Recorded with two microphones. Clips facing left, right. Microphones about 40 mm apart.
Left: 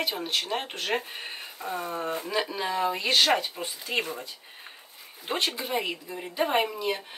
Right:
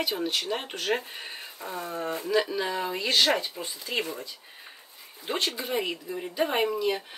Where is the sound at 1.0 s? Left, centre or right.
Left.